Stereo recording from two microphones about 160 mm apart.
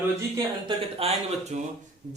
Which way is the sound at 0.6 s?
40° right (ahead or behind).